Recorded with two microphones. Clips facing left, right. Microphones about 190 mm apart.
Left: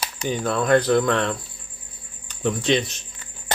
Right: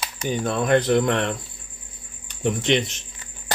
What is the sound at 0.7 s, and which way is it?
Speech, 20° right (ahead or behind).